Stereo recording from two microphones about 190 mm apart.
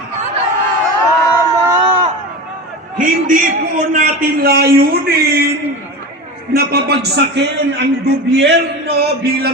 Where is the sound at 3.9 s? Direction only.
50° right (ahead or behind).